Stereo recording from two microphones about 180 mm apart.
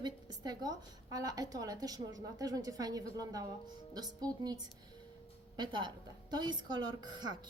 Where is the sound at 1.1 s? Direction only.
20° right (ahead or behind).